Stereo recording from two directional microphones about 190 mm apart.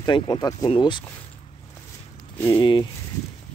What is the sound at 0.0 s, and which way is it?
Speech, 20° left (ahead or behind).